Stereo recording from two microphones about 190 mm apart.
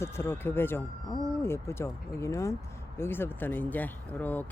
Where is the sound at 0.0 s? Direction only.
15° left (ahead or behind).